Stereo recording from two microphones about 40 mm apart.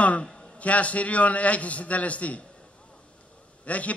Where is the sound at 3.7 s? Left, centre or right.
Left.